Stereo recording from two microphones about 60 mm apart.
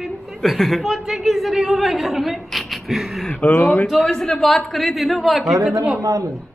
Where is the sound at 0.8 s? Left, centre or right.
Centre.